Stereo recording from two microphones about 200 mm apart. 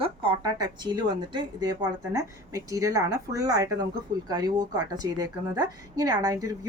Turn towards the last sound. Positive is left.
turn(degrees=-15)  # may be behind; listen again after turning